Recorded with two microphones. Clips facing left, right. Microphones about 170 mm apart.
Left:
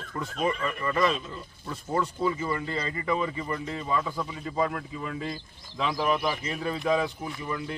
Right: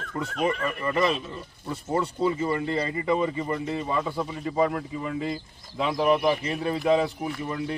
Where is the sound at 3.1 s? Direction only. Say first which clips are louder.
Right 4 dB; 35° right (ahead or behind).